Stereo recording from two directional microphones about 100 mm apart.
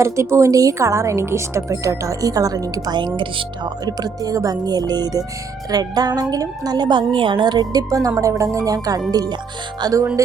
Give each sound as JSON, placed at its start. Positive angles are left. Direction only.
{"t": 0.0, "sound": "speech", "side_deg": -30}